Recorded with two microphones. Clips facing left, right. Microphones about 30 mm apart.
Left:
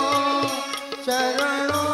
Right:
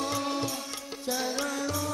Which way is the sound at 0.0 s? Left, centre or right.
Left.